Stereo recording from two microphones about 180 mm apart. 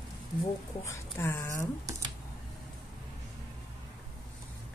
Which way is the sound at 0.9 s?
15° left (ahead or behind).